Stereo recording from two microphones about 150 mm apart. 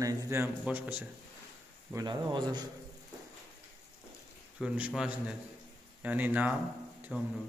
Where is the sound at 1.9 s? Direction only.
30° right (ahead or behind).